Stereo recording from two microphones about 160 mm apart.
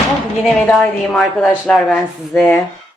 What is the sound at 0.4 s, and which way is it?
A woman's voice, 5° left (ahead or behind).